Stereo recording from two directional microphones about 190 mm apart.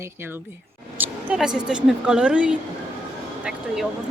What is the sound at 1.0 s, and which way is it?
Speech, 5° right (ahead or behind).